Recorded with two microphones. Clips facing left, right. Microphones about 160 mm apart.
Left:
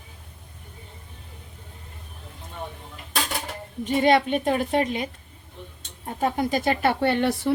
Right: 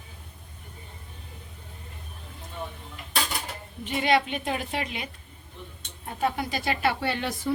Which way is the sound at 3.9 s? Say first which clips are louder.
Left 5 dB; 45° left (ahead or behind).